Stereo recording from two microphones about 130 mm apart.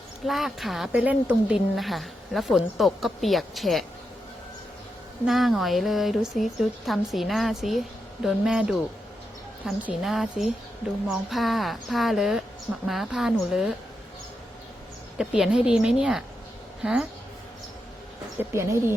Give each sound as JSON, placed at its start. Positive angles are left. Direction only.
{"t": 0.3, "sound": "speech", "side_deg": 0}
{"t": 5.2, "sound": "speech", "side_deg": 0}
{"t": 9.8, "sound": "speech", "side_deg": 0}
{"t": 15.2, "sound": "a woman's voice", "side_deg": -5}
{"t": 18.3, "sound": "speech", "side_deg": -20}